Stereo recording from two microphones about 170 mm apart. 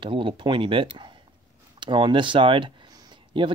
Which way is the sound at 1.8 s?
30° right (ahead or behind).